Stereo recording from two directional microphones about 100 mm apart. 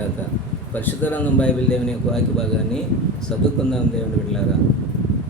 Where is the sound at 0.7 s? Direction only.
15° left (ahead or behind).